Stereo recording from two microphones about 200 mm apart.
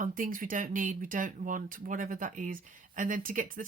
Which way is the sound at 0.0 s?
45° right (ahead or behind).